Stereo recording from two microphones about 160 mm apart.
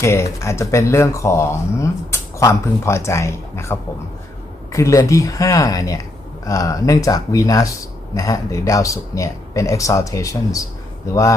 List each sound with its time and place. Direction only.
0.0 s speech: 20° left (ahead or behind)